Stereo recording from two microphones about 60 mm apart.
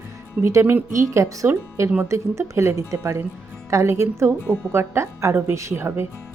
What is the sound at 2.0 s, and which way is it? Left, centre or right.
Speech, right.